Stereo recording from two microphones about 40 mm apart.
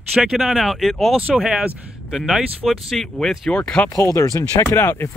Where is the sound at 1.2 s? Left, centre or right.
Right.